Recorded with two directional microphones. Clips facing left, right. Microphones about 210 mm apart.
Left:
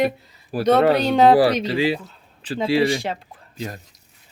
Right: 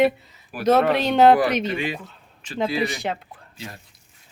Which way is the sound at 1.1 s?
Centre (ahead or behind).